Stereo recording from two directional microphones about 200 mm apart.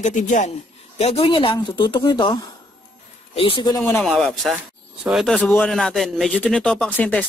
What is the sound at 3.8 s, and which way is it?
Speech, 10° left (ahead or behind).